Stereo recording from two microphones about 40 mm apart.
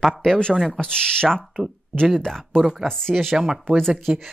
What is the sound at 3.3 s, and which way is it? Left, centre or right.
Speech, centre.